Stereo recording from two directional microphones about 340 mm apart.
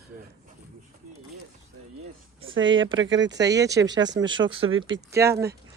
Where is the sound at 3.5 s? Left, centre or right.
Centre.